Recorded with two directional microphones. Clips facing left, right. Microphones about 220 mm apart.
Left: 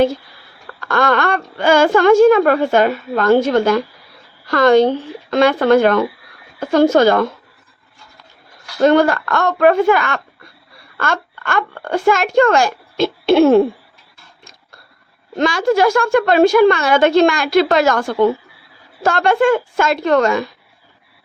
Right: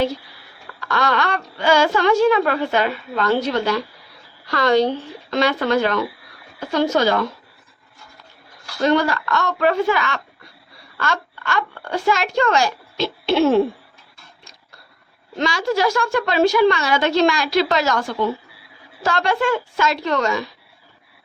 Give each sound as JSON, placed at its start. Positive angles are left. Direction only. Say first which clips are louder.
{"t": 0.8, "sound": "speech", "louder": "left 5 dB", "side_deg": 50}
{"t": 8.8, "sound": "a child's voice", "louder": "left 6 dB", "side_deg": 50}
{"t": 15.4, "sound": "speech", "louder": "left 6 dB", "side_deg": 50}